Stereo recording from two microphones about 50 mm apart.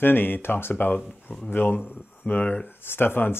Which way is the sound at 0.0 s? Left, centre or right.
Left.